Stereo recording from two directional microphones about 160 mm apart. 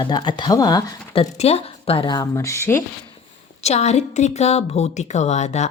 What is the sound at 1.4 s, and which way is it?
A woman's voice, 40° left (ahead or behind).